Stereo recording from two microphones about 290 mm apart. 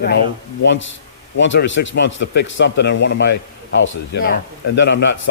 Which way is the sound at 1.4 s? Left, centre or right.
Left.